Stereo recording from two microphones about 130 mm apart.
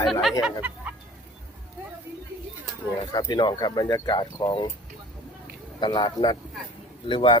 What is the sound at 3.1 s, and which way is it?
Speech, 35° left (ahead or behind).